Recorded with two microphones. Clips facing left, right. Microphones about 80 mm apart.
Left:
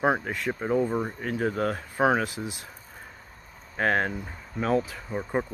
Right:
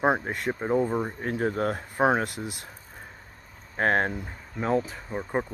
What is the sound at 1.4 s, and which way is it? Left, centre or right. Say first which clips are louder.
Speech: even; right.